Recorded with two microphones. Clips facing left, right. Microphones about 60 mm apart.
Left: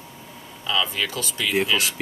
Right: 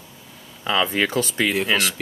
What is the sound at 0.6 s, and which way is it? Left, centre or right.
Speech, right.